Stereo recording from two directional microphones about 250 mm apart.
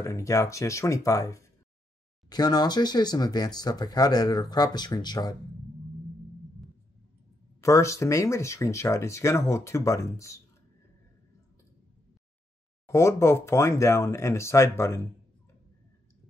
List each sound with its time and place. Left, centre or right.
0.0 s speech: centre
7.6 s speech: centre
12.8 s speech: centre